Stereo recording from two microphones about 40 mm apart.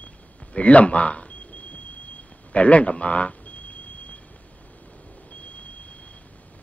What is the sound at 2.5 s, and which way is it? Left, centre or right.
A man's voice, left.